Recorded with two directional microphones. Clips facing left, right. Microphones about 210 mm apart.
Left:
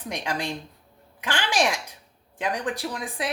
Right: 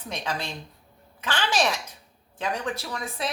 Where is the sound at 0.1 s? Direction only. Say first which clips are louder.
Left 2 dB; 15° left (ahead or behind).